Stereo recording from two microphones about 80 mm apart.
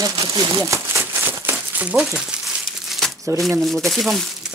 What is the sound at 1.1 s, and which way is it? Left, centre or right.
Crumpling, right.